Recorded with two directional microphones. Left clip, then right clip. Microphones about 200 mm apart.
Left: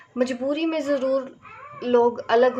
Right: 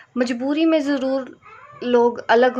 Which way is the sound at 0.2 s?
45° right (ahead or behind).